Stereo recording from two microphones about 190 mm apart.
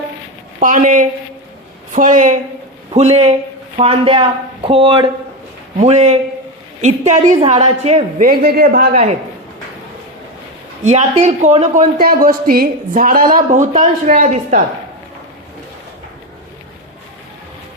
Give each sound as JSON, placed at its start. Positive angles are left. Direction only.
{"t": 0.6, "sound": "a man's voice", "side_deg": -45}
{"t": 8.2, "sound": "a man's voice", "side_deg": -50}
{"t": 10.8, "sound": "a man's voice", "side_deg": -35}